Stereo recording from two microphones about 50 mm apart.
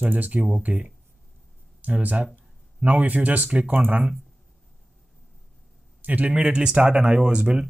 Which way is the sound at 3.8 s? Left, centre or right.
Right.